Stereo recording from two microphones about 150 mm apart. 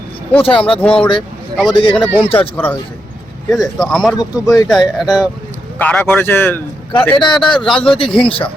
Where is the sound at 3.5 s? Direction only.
Centre (ahead or behind).